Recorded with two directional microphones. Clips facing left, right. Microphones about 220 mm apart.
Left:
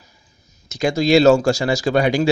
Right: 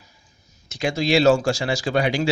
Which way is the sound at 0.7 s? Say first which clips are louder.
Left 5 dB; 40° left (ahead or behind).